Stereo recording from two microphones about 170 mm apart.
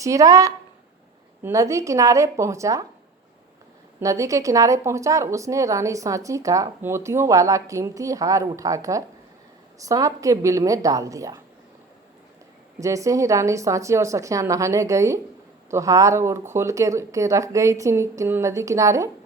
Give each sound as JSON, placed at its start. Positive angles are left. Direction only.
{"t": 0.0, "sound": "a woman's voice", "side_deg": -20}
{"t": 4.0, "sound": "a woman's voice", "side_deg": -20}
{"t": 12.8, "sound": "speech", "side_deg": -20}